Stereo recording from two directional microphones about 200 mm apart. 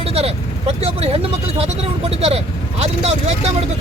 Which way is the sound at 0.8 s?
30° right (ahead or behind).